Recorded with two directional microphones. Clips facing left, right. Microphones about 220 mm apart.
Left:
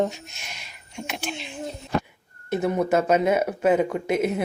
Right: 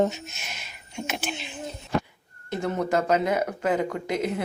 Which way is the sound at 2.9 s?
20° left (ahead or behind).